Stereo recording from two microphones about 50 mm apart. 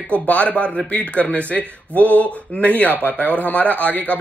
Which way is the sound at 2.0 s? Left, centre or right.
Left.